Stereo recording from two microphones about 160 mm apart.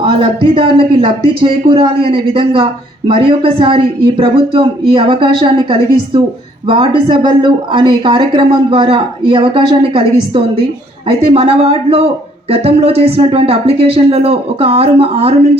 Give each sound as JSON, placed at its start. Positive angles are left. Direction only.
{"t": 0.0, "sound": "speech", "side_deg": -35}